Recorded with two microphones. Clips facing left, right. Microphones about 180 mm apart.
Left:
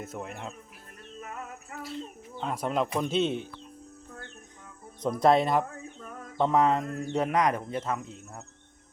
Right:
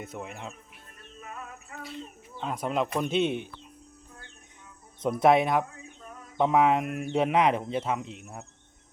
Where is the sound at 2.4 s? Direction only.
Centre (ahead or behind).